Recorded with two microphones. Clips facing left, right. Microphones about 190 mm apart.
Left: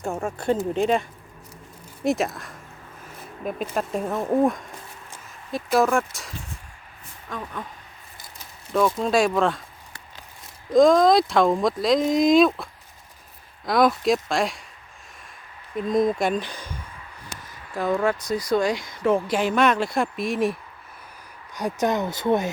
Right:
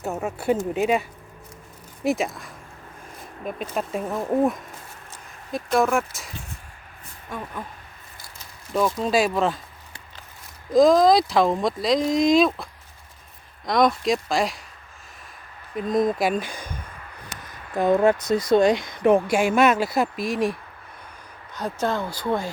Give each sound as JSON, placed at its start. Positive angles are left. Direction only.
{"t": 0.0, "sound": "speech", "side_deg": -5}
{"t": 2.0, "sound": "speech", "side_deg": 0}
{"t": 9.0, "sound": "speech", "side_deg": -5}
{"t": 10.8, "sound": "speech", "side_deg": 0}
{"t": 13.7, "sound": "speech", "side_deg": 5}
{"t": 15.7, "sound": "speech", "side_deg": 0}
{"t": 17.7, "sound": "speech", "side_deg": -20}
{"t": 21.5, "sound": "speech", "side_deg": 15}